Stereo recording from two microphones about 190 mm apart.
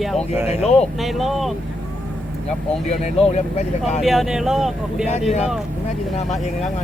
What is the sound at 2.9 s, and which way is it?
Speech, 35° left (ahead or behind).